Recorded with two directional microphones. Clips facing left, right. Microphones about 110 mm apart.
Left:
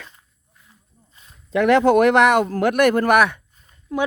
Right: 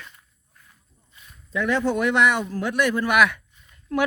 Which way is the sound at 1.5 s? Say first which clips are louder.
Left 8 dB; 80° left.